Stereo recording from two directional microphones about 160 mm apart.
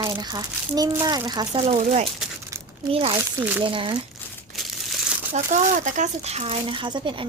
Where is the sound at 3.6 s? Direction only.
30° right (ahead or behind).